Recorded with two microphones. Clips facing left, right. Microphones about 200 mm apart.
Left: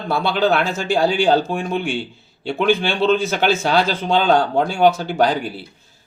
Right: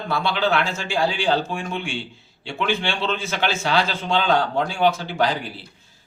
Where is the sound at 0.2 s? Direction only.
40° left (ahead or behind).